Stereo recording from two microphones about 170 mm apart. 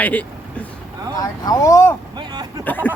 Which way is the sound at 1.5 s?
20° left (ahead or behind).